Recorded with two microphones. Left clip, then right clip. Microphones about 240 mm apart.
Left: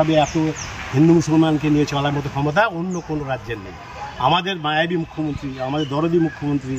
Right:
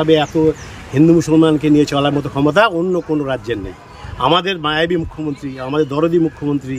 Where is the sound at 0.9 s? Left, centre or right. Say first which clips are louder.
Right 4 dB; centre.